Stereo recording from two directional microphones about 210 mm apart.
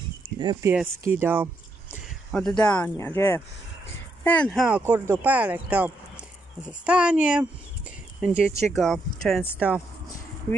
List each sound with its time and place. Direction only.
0.4 s speech: 15° right (ahead or behind)
1.9 s speech: 5° left (ahead or behind)